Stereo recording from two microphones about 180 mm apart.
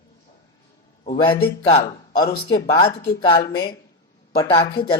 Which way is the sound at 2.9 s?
50° left (ahead or behind).